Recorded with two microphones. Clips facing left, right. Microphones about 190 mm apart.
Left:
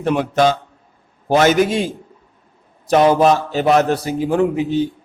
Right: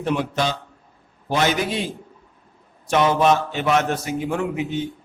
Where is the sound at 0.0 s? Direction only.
50° left (ahead or behind).